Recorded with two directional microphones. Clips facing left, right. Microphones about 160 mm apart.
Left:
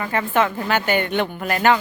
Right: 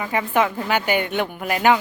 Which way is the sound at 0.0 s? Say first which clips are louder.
Even; 10° right (ahead or behind).